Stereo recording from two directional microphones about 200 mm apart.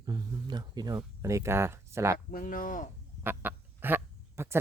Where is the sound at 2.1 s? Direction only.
45° left (ahead or behind).